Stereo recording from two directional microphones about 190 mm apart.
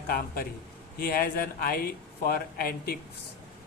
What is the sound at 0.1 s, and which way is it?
A man's voice, 50° left (ahead or behind).